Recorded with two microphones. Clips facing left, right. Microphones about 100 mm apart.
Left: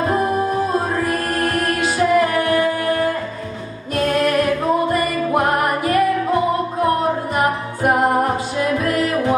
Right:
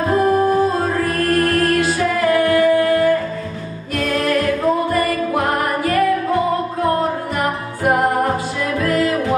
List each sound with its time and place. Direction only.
0.1 s music: 15° left (ahead or behind)